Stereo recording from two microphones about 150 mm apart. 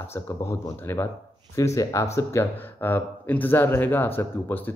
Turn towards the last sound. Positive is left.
turn(degrees=15)  # may be behind; listen again after turning